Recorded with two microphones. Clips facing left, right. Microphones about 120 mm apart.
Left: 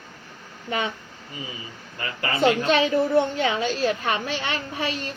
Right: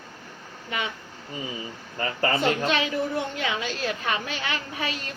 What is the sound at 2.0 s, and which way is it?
Speech, 40° right (ahead or behind).